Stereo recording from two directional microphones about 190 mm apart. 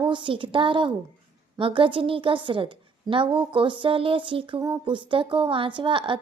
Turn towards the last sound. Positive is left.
turn(degrees=-25)  # may be behind; listen again after turning